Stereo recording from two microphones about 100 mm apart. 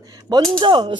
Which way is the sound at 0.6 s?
55° right (ahead or behind).